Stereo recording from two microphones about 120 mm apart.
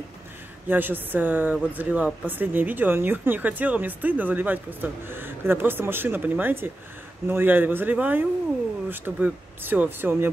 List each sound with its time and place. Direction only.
0.7 s speech: 15° right (ahead or behind)